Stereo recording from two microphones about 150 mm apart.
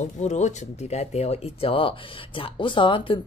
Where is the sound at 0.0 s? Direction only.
50° left (ahead or behind).